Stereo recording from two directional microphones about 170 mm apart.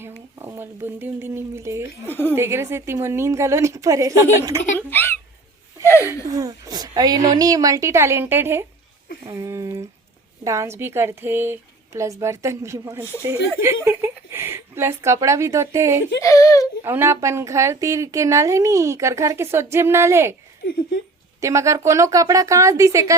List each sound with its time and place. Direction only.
0.3 s speech: 15° right (ahead or behind)
2.0 s a woman's voice: 10° left (ahead or behind)
2.3 s a woman's voice: 15° right (ahead or behind)
4.9 s hiccup: 10° left (ahead or behind)
6.3 s a woman's voice: 20° right (ahead or behind)
16.2 s speech: 20° left (ahead or behind)
16.8 s a woman's voice: 15° right (ahead or behind)
21.4 s a woman's voice: 15° right (ahead or behind)